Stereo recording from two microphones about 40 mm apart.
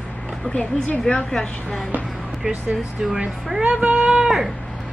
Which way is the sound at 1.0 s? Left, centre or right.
Centre.